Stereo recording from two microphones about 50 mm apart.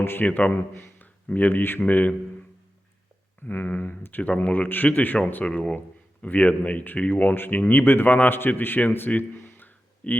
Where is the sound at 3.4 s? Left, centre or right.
Left.